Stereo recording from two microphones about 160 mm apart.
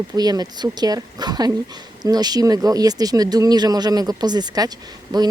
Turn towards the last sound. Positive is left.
turn(degrees=-25)  # may be behind; listen again after turning